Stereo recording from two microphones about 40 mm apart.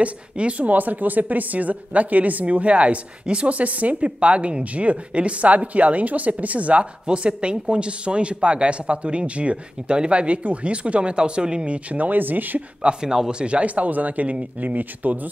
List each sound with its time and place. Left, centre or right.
0.0 s a woman's voice: right
12.8 s a woman's voice: centre; by 15.1 s right